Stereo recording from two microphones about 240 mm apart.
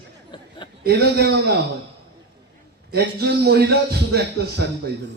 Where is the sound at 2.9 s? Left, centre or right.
Right.